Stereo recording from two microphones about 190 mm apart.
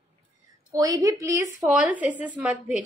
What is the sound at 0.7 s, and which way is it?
A woman's voice, 20° right (ahead or behind).